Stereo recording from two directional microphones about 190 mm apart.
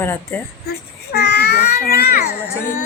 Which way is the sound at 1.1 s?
55° left (ahead or behind).